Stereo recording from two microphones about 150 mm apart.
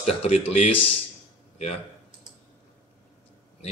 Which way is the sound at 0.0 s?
45° left (ahead or behind).